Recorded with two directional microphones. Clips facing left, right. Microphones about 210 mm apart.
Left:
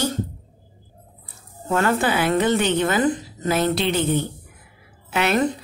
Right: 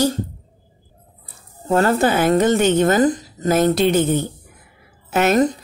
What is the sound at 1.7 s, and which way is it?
Speech, 40° right (ahead or behind).